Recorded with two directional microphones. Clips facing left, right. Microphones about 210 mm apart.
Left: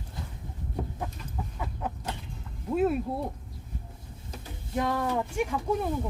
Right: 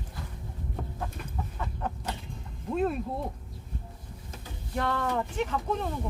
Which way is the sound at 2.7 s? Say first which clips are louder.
Left 3 dB; 5° left (ahead or behind).